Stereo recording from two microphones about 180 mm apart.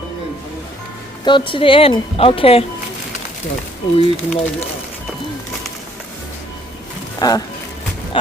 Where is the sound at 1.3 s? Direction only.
25° left (ahead or behind).